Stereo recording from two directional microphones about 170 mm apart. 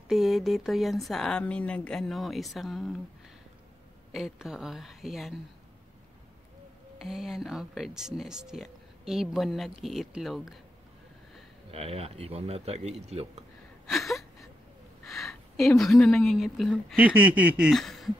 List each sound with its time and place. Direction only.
0.1 s speech: centre (ahead or behind)
4.1 s speech: centre (ahead or behind)
7.0 s speech: centre (ahead or behind)
11.7 s speech: 35° right (ahead or behind)
13.8 s a sound: centre (ahead or behind)
15.0 s a woman's voice: centre (ahead or behind)
16.9 s a sound: 10° right (ahead or behind)